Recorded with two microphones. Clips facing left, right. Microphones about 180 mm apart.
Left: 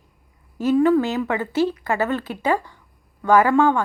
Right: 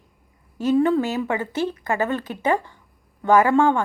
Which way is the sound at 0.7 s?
25° right (ahead or behind).